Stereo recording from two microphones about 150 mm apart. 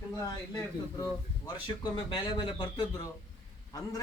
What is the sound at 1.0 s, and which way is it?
A man's voice, 30° left (ahead or behind).